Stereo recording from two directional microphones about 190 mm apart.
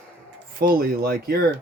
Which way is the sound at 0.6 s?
50° right (ahead or behind).